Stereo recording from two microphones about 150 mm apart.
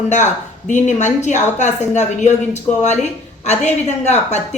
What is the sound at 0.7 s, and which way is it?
A woman's voice, 55° left (ahead or behind).